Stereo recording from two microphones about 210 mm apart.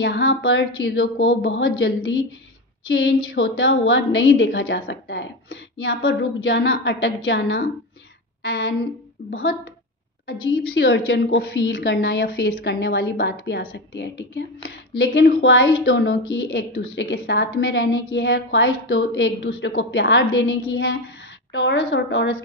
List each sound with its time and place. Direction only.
0.0 s a woman's voice: 55° left (ahead or behind)
10.7 s a woman's voice: 55° left (ahead or behind)
21.5 s a woman's voice: 60° left (ahead or behind)